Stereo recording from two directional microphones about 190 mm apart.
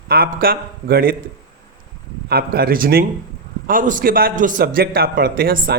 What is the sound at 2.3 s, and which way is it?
A man's voice, 55° right (ahead or behind).